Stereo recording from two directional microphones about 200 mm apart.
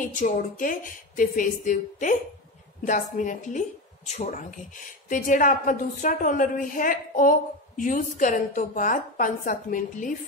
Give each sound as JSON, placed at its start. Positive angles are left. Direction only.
{"t": 0.0, "sound": "a woman's voice", "side_deg": 40}